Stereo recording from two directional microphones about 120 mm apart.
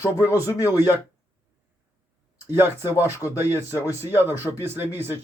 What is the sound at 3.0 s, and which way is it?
Speech, 25° left (ahead or behind).